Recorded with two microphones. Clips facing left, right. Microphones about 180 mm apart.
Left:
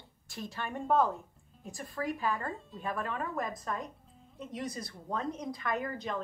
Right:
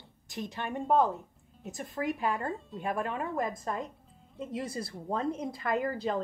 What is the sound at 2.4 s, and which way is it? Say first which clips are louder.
Speech: right 4 dB; centre (ahead or behind).